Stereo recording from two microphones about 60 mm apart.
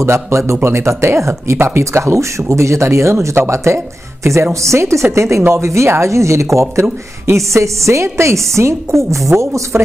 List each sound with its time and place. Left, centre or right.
0.0 s speech: right